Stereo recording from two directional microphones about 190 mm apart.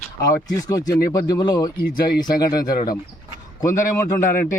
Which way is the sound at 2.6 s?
20° left (ahead or behind).